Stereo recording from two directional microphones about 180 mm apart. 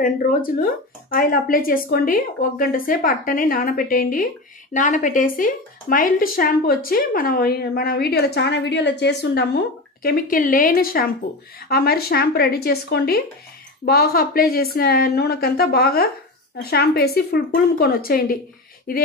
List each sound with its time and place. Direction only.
0.0 s a woman's voice: 50° left (ahead or behind)
10.0 s a woman's voice: 55° left (ahead or behind)